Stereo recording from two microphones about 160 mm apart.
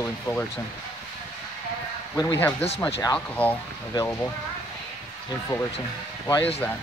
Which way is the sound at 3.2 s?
10° left (ahead or behind).